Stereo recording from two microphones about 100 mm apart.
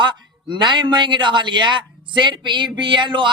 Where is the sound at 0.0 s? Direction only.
50° right (ahead or behind).